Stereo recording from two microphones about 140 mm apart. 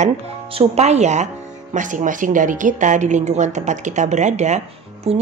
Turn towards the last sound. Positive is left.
turn(degrees=-50)  # may be behind; listen again after turning